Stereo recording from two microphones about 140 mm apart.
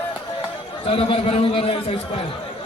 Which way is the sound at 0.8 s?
45° left (ahead or behind).